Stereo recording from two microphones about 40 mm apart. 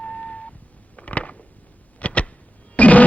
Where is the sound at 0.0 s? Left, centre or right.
Left.